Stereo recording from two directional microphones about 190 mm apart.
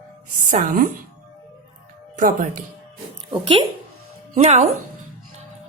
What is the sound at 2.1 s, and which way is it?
Speech, 45° right (ahead or behind).